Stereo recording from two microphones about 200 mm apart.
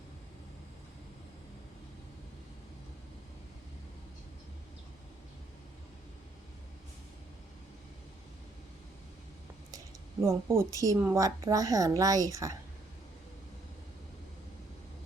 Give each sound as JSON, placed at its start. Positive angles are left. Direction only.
{"t": 9.7, "sound": "speech", "side_deg": -15}